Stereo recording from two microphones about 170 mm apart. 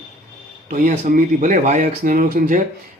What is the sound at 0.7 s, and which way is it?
A man's voice, 50° right (ahead or behind).